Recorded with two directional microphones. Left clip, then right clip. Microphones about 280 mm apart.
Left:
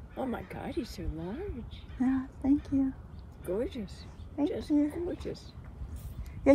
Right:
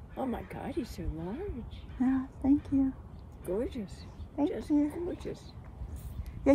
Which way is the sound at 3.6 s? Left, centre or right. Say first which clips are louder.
Left 1 dB; right.